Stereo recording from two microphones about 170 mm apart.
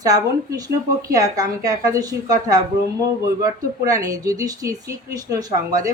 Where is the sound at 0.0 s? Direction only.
20° right (ahead or behind).